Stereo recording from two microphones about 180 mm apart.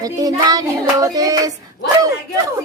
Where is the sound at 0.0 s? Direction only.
20° right (ahead or behind).